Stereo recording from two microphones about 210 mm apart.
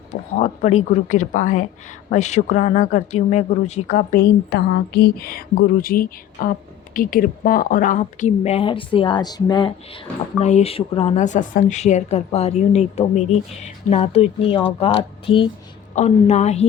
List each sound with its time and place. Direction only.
0.3 s speech: 30° left (ahead or behind)
4.2 s speech: 50° left (ahead or behind); by 16.6 s 30° left (ahead or behind)